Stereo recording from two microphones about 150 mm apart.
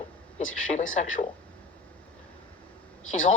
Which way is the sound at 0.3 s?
50° left (ahead or behind).